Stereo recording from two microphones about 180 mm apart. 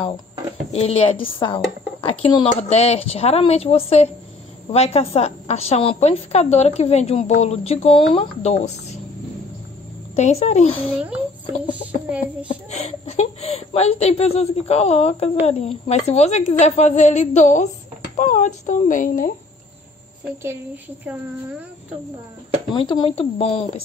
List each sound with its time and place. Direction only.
0.7 s a woman's voice: 35° left (ahead or behind)
10.1 s a woman's voice: 40° left (ahead or behind)
12.4 s a woman's voice: 35° left (ahead or behind); by 19.3 s 50° left (ahead or behind)
22.8 s a woman's voice: 25° left (ahead or behind)